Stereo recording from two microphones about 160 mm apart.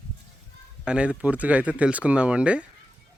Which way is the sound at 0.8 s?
5° right (ahead or behind).